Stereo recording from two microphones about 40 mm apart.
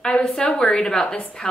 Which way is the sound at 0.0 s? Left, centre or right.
Left.